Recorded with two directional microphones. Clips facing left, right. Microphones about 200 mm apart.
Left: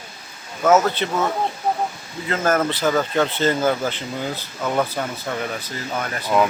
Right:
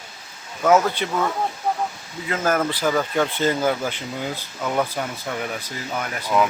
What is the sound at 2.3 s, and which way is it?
Speech, 10° right (ahead or behind).